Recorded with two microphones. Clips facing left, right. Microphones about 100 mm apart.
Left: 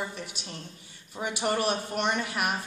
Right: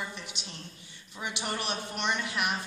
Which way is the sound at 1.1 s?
35° left (ahead or behind).